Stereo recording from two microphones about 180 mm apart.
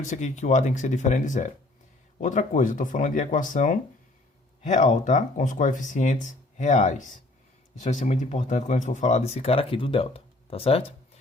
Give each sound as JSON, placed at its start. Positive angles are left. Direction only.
{"t": 0.0, "sound": "speech", "side_deg": 40}